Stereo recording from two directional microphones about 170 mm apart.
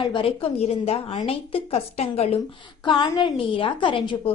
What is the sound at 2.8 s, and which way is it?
A woman's voice, 25° left (ahead or behind).